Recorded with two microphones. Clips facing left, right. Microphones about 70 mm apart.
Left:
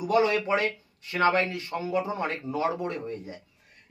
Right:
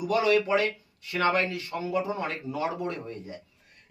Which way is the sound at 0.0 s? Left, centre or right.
Left.